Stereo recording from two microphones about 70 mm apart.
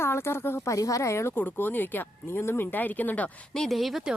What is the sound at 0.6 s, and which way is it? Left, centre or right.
Speech, left.